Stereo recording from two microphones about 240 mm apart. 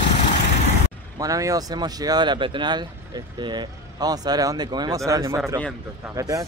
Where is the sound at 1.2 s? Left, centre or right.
Centre.